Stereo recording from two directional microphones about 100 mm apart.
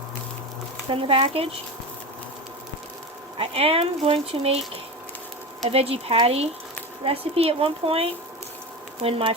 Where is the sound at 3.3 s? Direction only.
75° right (ahead or behind); by 6.5 s 90° right.